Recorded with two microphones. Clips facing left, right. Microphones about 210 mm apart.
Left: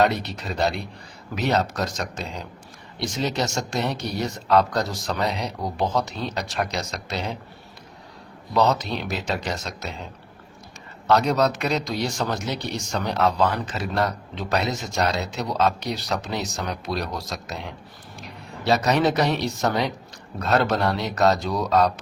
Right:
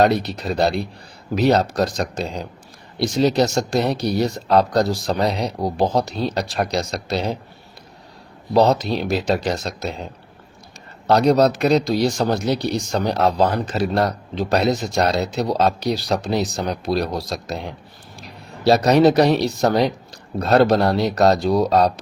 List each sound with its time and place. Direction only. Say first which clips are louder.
0.0 s speech: right 5 dB; 35° right (ahead or behind)
8.5 s speech: right 5 dB; 35° right (ahead or behind)
11.0 s speech: right 5 dB; 35° right (ahead or behind)